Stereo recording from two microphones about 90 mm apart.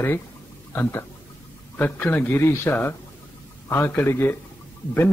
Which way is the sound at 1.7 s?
20° left (ahead or behind).